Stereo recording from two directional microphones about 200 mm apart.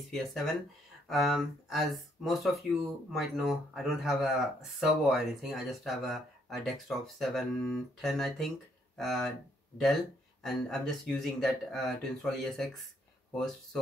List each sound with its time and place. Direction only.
0.1 s speech: centre (ahead or behind)